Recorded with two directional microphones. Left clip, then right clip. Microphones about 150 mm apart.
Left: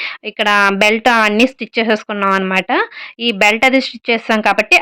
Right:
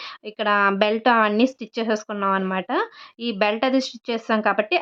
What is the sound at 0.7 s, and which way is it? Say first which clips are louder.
Speech: left 7 dB; 15° left (ahead or behind).